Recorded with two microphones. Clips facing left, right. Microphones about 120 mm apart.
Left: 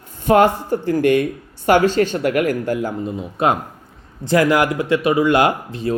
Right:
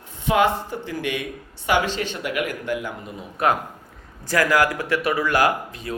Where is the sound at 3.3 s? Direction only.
25° left (ahead or behind).